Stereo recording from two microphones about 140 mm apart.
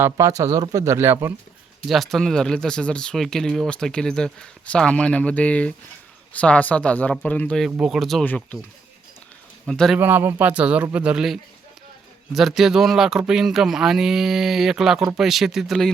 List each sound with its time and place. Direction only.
0.0 s speech: 20° right (ahead or behind)
1.9 s speech: centre (ahead or behind)
9.6 s speech: 5° left (ahead or behind)
10.0 s speech: 15° right (ahead or behind)